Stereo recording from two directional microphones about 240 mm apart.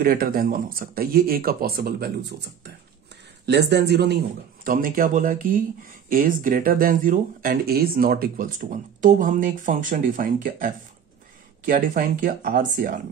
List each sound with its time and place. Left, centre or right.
0.0 s speech: right